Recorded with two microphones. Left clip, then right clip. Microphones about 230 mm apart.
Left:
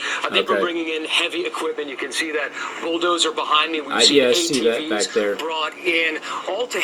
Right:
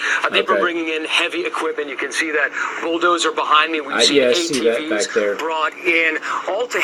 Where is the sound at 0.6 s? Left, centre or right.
Right.